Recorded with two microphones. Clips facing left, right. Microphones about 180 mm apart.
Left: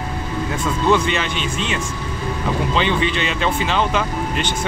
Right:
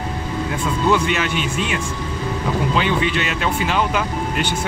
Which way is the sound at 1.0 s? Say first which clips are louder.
Right 1 dB; 10° right (ahead or behind).